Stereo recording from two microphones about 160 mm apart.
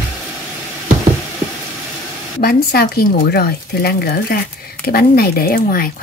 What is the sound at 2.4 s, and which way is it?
Speech, 70° left (ahead or behind).